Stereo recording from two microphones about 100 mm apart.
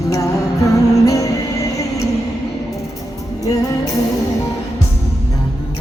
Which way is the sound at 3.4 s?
35° left (ahead or behind).